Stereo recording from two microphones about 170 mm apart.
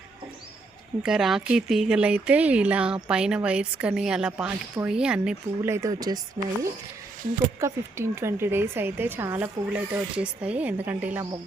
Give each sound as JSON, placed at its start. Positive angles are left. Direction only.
{"t": 1.0, "sound": "speech", "side_deg": -5}
{"t": 5.7, "sound": "speech", "side_deg": -20}
{"t": 7.6, "sound": "speech", "side_deg": -15}